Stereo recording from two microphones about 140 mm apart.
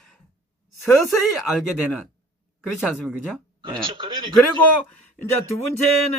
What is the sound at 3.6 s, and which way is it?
Speech, 35° right (ahead or behind).